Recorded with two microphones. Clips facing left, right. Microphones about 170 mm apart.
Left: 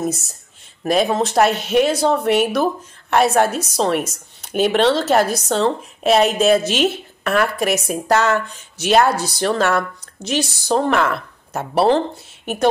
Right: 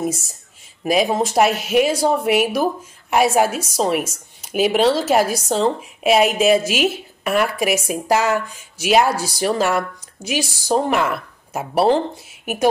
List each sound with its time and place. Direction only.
0.8 s a woman's voice: 10° right (ahead or behind)